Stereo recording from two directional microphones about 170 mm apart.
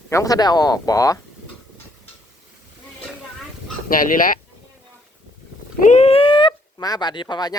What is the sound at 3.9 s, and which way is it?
Speech, 55° left (ahead or behind).